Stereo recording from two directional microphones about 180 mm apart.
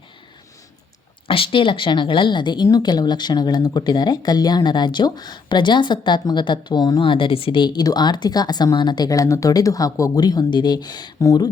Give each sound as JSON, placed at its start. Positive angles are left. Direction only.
{"t": 1.3, "sound": "a woman's voice", "side_deg": 30}